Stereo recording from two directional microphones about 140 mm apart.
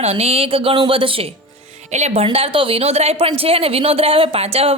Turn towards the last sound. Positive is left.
turn(degrees=-45)  # may be behind; listen again after turning